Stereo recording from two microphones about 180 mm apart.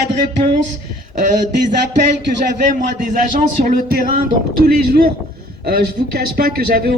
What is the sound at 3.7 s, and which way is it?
Speech, 55° right (ahead or behind).